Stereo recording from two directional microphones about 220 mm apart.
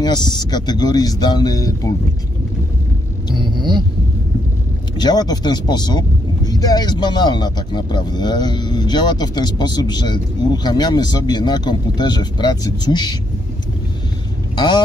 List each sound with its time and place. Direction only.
0.0 s speech: 20° left (ahead or behind)
3.3 s vehicle: 20° right (ahead or behind)
4.9 s speech: 20° left (ahead or behind)